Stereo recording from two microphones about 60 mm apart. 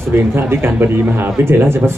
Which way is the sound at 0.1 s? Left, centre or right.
Right.